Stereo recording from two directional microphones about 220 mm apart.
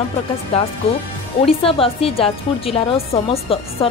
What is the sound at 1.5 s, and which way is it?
A woman's voice, 25° left (ahead or behind).